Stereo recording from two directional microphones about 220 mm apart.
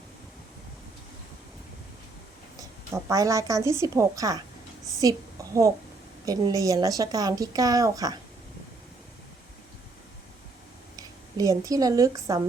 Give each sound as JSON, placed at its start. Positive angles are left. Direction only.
{"t": 2.6, "sound": "a woman's voice", "side_deg": -15}
{"t": 6.2, "sound": "a woman's voice", "side_deg": -15}
{"t": 10.9, "sound": "speech", "side_deg": -15}